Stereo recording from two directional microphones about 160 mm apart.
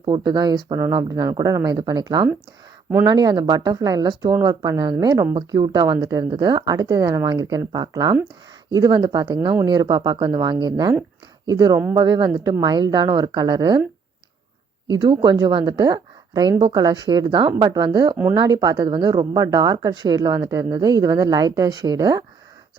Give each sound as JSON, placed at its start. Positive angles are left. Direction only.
{"t": 0.0, "sound": "speech", "side_deg": -25}
{"t": 14.8, "sound": "speech", "side_deg": -30}